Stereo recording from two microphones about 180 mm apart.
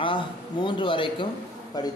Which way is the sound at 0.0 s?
25° left (ahead or behind).